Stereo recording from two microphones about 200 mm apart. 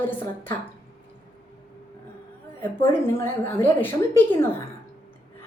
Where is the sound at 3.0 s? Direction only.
10° left (ahead or behind).